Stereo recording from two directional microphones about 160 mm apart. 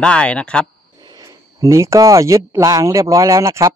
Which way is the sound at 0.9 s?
25° right (ahead or behind).